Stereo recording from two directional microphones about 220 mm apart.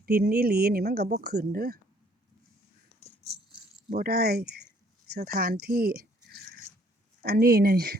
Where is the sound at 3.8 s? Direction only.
40° right (ahead or behind).